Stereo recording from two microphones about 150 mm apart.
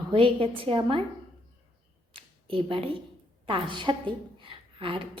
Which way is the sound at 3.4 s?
35° right (ahead or behind).